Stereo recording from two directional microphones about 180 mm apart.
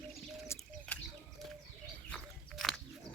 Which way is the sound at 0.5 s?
15° left (ahead or behind).